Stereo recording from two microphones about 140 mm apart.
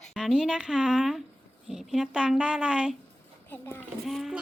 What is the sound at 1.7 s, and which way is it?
Speech, 5° right (ahead or behind).